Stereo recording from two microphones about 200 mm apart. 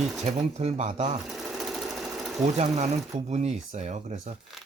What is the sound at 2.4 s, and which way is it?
Speech, 35° right (ahead or behind).